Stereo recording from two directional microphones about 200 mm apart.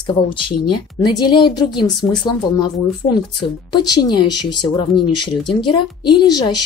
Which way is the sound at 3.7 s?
20° left (ahead or behind).